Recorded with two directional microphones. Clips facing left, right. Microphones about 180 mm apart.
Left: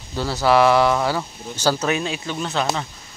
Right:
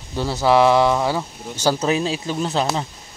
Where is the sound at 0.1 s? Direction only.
20° right (ahead or behind).